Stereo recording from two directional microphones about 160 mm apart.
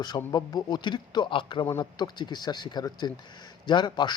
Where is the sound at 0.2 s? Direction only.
20° left (ahead or behind).